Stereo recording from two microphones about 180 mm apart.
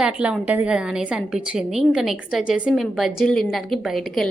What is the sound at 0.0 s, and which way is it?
A woman's voice, 5° right (ahead or behind).